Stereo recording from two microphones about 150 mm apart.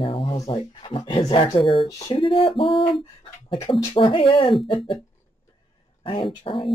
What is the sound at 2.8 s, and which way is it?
Speech, 35° left (ahead or behind).